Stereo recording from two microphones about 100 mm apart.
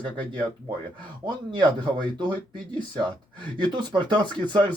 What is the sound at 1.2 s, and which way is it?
Speech, 50° right (ahead or behind).